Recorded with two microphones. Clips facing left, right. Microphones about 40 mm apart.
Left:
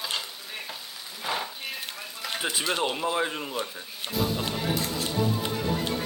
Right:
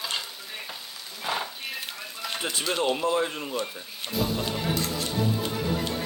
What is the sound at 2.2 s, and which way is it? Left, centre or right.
Speech, centre.